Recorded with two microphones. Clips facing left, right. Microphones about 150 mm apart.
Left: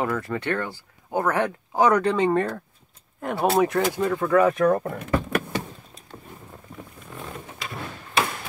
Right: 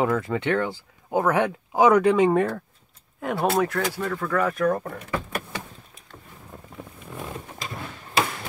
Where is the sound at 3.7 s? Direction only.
20° left (ahead or behind).